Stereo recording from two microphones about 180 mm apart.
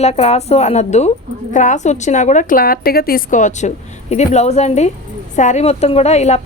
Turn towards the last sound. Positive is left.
turn(degrees=40)  # may be behind; listen again after turning